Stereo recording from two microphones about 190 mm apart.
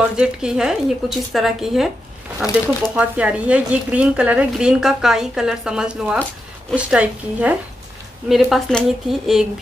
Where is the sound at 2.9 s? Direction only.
5° right (ahead or behind).